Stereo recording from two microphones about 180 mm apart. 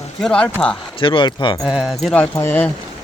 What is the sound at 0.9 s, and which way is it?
Speech, 30° left (ahead or behind).